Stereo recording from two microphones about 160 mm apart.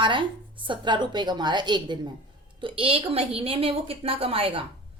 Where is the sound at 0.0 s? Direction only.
30° right (ahead or behind).